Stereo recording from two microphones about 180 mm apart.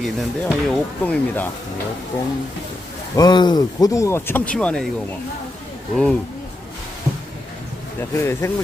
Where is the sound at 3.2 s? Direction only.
25° left (ahead or behind); by 4.9 s 5° left (ahead or behind).